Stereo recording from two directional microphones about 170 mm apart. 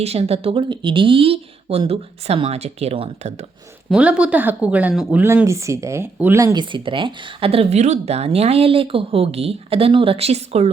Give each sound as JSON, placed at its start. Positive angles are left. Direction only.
{"t": 0.0, "sound": "speech", "side_deg": -35}
{"t": 3.8, "sound": "speech", "side_deg": -5}